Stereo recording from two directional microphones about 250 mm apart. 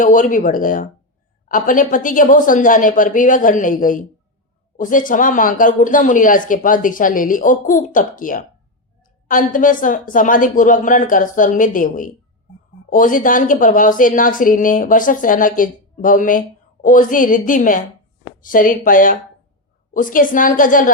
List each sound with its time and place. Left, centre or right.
0.0 s a woman's voice: left